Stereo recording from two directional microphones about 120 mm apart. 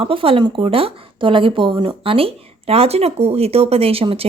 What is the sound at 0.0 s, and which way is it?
Speech, 50° right (ahead or behind).